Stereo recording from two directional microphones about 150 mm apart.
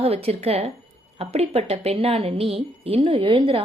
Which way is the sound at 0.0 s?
40° right (ahead or behind).